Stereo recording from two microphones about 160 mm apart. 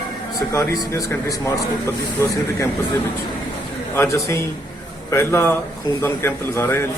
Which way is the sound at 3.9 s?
20° left (ahead or behind).